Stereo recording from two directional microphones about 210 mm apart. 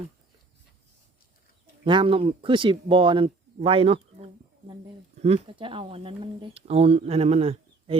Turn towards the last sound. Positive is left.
turn(degrees=-30)  # may be behind; listen again after turning